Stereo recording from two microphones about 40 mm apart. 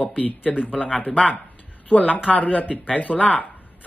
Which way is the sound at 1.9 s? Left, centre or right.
Left.